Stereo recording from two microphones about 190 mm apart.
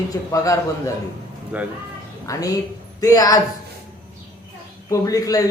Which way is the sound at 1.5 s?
5° right (ahead or behind).